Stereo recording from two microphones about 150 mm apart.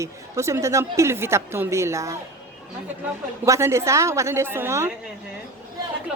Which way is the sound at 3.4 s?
20° right (ahead or behind).